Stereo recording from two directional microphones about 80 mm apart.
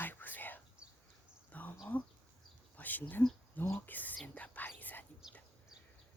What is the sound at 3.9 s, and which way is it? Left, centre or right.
Speech, left.